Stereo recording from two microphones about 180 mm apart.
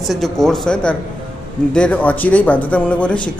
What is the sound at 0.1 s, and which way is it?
Speech, centre (ahead or behind).